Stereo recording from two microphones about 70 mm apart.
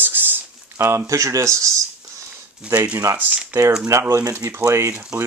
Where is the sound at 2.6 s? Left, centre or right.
Centre.